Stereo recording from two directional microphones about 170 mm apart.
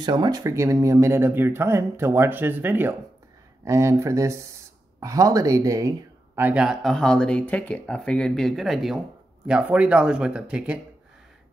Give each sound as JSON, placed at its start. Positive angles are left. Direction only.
{"t": 0.0, "sound": "speech", "side_deg": -20}